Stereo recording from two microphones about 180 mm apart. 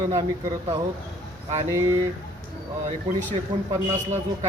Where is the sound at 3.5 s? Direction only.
25° right (ahead or behind).